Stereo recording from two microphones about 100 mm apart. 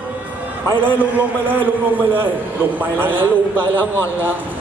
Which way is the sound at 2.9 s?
20° right (ahead or behind).